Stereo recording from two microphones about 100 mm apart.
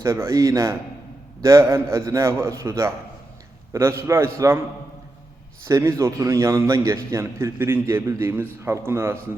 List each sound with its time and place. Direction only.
0.0 s a man's voice: 30° right (ahead or behind)
5.6 s a man's voice: 30° right (ahead or behind)